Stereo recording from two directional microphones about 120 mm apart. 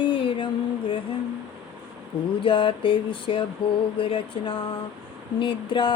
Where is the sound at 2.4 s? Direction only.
45° left (ahead or behind).